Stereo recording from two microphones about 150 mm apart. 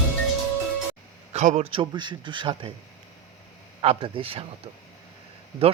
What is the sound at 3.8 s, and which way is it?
Speech, 40° right (ahead or behind).